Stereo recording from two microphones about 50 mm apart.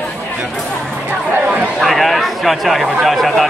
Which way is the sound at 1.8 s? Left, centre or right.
Centre.